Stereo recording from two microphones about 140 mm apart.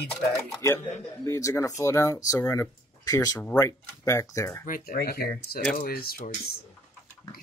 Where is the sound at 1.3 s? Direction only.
20° left (ahead or behind).